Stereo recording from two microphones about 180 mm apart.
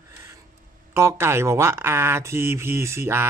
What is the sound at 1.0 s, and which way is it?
Speech, 15° right (ahead or behind).